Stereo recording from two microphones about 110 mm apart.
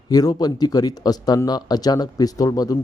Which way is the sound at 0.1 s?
35° left (ahead or behind).